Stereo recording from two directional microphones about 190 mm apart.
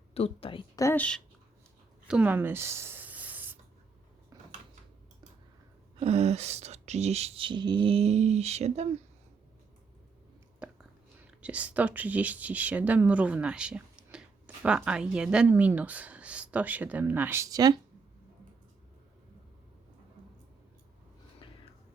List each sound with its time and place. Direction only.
0.1 s a woman's voice: 30° left (ahead or behind)
0.8 s a woman's voice: 10° left (ahead or behind)
2.0 s writing: 5° right (ahead or behind)
6.0 s speech: 35° right (ahead or behind)
10.6 s a sound: 5° right (ahead or behind)
11.3 s speech: 5° right (ahead or behind)